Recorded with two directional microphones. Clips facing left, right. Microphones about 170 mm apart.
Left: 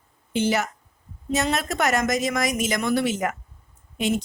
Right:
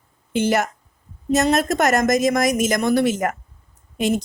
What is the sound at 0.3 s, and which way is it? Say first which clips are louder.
Speech: right 3 dB; 50° right (ahead or behind).